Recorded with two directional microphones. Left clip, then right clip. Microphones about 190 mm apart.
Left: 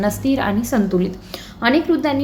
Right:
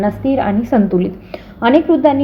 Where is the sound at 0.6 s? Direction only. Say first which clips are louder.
Right 5 dB; 15° right (ahead or behind).